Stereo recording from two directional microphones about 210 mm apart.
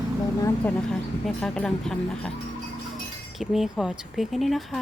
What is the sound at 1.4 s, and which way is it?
Speech, 5° left (ahead or behind).